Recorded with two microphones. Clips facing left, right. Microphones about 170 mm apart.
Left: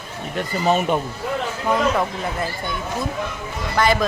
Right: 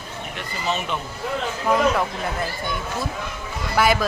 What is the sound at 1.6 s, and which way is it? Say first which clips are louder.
Speech: even; centre (ahead or behind).